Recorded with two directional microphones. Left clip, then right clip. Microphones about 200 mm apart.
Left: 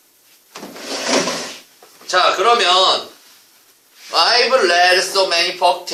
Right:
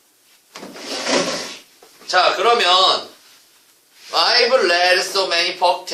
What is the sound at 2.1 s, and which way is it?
Speech, 10° left (ahead or behind).